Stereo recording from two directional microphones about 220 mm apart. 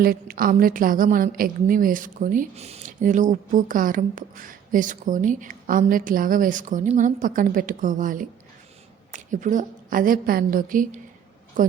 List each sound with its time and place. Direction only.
0.0 s a woman's voice: 40° right (ahead or behind)